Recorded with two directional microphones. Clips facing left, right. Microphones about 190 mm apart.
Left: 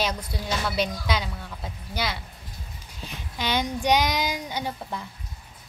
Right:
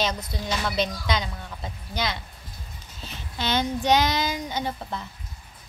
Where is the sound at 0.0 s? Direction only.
10° left (ahead or behind).